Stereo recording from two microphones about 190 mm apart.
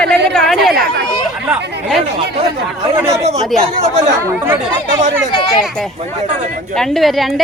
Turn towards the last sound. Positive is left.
turn(degrees=0)  # may be behind; listen again after turning